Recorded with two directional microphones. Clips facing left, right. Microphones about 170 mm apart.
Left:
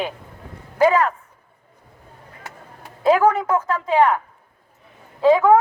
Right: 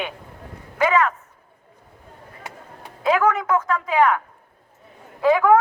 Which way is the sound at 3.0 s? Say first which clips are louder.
Left 3 dB; 30° left (ahead or behind).